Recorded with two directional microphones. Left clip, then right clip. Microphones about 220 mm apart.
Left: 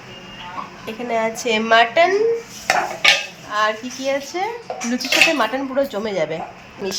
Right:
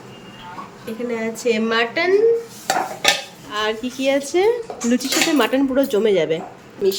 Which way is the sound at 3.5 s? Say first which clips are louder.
Left 2 dB; 10° right (ahead or behind).